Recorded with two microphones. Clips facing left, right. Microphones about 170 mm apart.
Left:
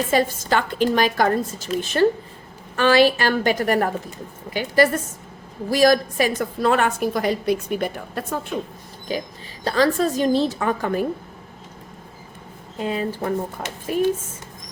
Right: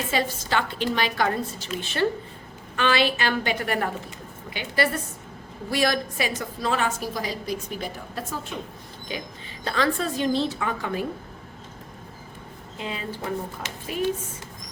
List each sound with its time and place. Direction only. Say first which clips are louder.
0.1 s a woman's voice: left 5 dB; 45° left (ahead or behind)
9.1 s a woman's voice: left 7 dB; 40° left (ahead or behind)
12.8 s a woman's voice: left 8 dB; 45° left (ahead or behind)